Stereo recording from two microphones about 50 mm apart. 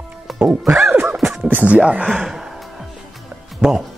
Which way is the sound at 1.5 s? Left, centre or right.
Right.